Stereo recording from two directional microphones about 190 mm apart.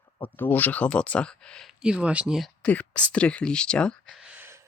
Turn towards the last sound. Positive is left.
turn(degrees=-10)  # may be behind; listen again after turning